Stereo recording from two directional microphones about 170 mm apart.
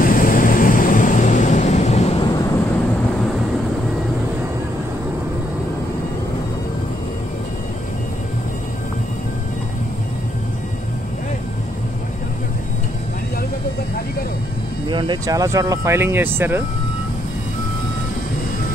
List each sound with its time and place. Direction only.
0.0 s vehicle: 55° left (ahead or behind)
14.9 s speech: 25° right (ahead or behind)